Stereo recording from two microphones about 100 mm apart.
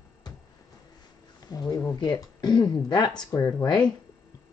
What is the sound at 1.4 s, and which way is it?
Speech, 40° left (ahead or behind).